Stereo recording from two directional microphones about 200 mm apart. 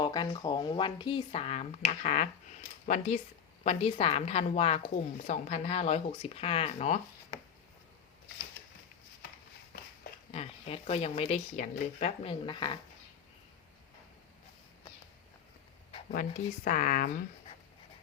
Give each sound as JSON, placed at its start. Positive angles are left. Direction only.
{"t": 0.0, "sound": "speech", "side_deg": 20}
{"t": 10.3, "sound": "speech", "side_deg": 30}
{"t": 16.6, "sound": "speech", "side_deg": 45}